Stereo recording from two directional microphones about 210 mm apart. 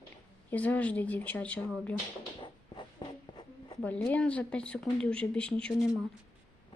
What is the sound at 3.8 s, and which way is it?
A woman's voice, 5° left (ahead or behind).